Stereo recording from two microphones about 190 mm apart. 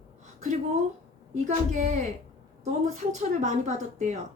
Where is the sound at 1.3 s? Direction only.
40° right (ahead or behind).